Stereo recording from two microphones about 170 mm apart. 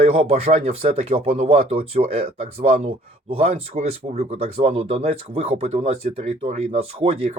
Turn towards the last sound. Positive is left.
turn(degrees=-35)  # may be behind; listen again after turning